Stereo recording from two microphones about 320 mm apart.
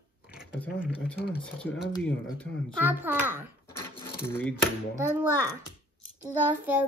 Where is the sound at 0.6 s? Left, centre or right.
Centre.